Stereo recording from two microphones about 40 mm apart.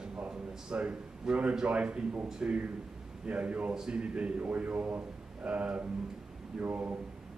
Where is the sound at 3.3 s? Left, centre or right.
Right.